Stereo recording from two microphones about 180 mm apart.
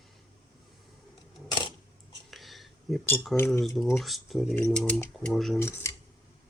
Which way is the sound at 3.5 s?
Centre (ahead or behind).